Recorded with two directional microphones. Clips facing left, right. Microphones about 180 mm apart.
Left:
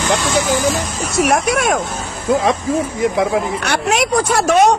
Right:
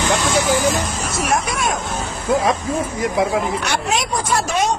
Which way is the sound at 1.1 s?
70° left (ahead or behind).